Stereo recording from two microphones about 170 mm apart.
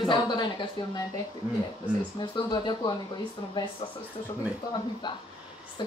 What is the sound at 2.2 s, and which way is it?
Speech, 25° left (ahead or behind).